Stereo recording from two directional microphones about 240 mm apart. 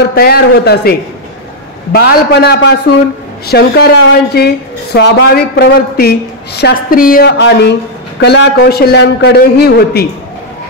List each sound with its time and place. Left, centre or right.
0.1 s a woman's voice: left